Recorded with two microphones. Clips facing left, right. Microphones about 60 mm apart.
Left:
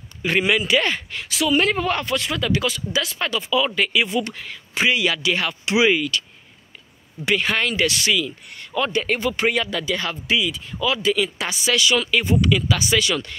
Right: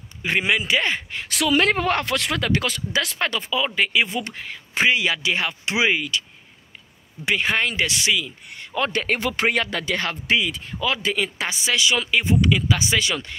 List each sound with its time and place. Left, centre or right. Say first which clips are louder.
0.2 s speech: left 2 dB; right
1.4 s speech: even; right
3.5 s speech: left 2 dB; right
7.2 s speech: left 1 dB; right
8.7 s speech: left 1 dB; right